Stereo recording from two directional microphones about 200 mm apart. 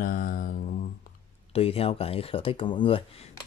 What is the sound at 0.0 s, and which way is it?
Mantra, 45° left (ahead or behind).